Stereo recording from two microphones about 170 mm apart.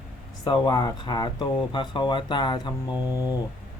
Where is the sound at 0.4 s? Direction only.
25° left (ahead or behind).